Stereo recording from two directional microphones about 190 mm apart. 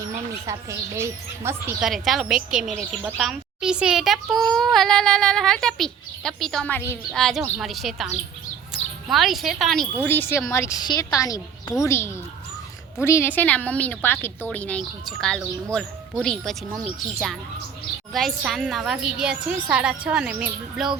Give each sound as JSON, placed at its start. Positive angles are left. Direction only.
{"t": 0.4, "sound": "speech", "side_deg": -15}
{"t": 1.8, "sound": "a woman's voice", "side_deg": 0}